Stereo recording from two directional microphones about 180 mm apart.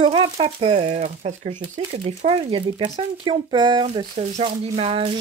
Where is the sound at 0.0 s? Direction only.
30° right (ahead or behind).